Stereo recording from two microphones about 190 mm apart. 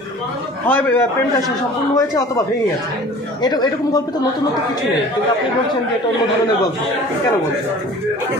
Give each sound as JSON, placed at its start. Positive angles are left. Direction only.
{"t": 0.7, "sound": "a man's voice", "side_deg": 10}
{"t": 3.4, "sound": "speech", "side_deg": 20}